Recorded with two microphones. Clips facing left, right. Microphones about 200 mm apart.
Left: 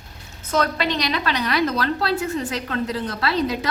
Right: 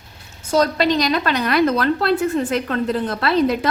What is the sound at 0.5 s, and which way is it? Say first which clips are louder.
A woman's voice: right 5 dB; 40° right (ahead or behind).